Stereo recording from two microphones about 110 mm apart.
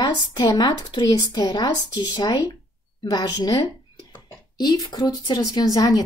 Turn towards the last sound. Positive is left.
turn(degrees=35)  # may be behind; listen again after turning